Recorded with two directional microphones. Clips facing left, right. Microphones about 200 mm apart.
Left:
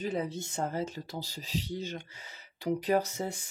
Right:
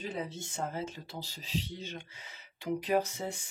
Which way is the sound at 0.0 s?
40° left (ahead or behind).